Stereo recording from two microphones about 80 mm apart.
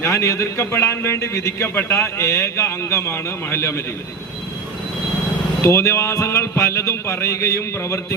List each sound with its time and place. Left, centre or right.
0.0 s a man's voice: left
5.6 s a man's voice: left